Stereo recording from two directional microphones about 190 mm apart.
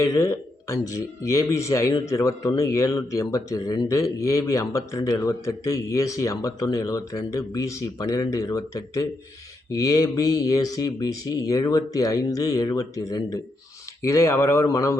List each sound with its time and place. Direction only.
0.0 s a man's voice: 15° left (ahead or behind)